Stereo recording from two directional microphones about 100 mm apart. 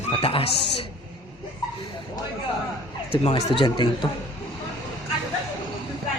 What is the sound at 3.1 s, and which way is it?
Speech, 70° left (ahead or behind).